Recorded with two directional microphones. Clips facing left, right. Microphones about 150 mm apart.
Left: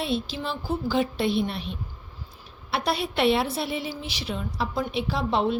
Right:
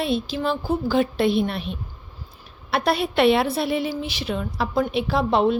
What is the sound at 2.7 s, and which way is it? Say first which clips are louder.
A woman's voice: right 5 dB; 55° right (ahead or behind).